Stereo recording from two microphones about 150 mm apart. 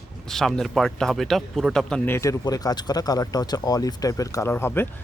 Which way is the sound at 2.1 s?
20° left (ahead or behind).